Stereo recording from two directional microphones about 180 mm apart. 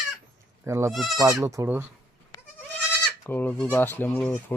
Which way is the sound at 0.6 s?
15° right (ahead or behind).